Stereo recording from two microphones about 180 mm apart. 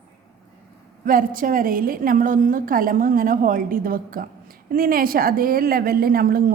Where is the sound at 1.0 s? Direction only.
50° right (ahead or behind).